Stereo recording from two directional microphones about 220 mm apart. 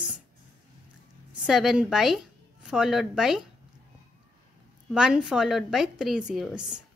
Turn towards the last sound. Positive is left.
turn(degrees=-5)  # may be behind; listen again after turning